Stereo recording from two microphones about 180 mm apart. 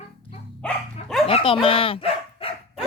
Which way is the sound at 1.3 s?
35° left (ahead or behind).